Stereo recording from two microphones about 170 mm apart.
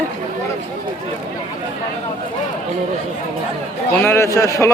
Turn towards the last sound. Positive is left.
turn(degrees=20)  # may be behind; listen again after turning